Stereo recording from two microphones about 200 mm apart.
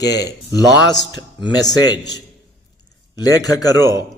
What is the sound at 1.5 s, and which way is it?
Speech, 20° left (ahead or behind).